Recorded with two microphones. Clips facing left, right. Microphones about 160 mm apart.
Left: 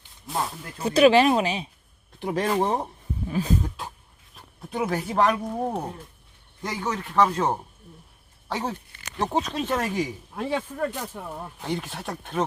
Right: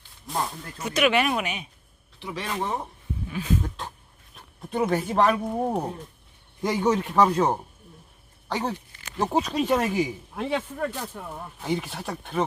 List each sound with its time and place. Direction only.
0.3 s speech: centre (ahead or behind)
0.8 s speech: 30° left (ahead or behind)
2.1 s speech: 50° left (ahead or behind)
2.5 s speech: 35° left (ahead or behind)
3.6 s speech: 5° left (ahead or behind)
6.6 s speech: 20° right (ahead or behind)
7.2 s speech: centre (ahead or behind)
11.1 s speech: 10° left (ahead or behind)
11.6 s speech: centre (ahead or behind)